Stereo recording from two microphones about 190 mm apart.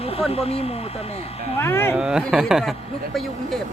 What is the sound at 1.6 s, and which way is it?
Speech, 10° left (ahead or behind).